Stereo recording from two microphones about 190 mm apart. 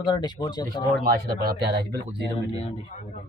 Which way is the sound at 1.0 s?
55° right (ahead or behind).